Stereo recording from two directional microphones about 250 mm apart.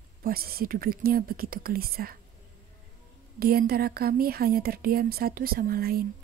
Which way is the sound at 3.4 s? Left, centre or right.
Right.